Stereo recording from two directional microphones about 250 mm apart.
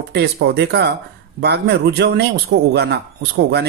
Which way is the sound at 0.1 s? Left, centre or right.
Right.